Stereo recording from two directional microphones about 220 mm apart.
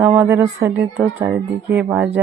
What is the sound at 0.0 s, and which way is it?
Speech, 5° right (ahead or behind).